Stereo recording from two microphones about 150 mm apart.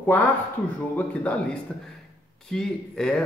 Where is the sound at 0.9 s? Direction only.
10° left (ahead or behind).